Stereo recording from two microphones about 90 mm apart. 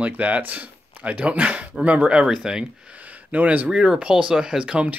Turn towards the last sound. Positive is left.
turn(degrees=-10)  # may be behind; listen again after turning